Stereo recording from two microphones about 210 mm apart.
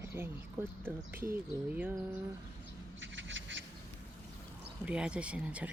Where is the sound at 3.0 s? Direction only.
65° right (ahead or behind).